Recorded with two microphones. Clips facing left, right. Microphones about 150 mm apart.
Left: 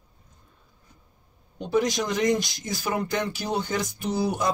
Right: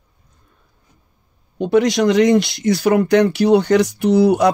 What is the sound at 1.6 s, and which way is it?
Speech, 75° right (ahead or behind).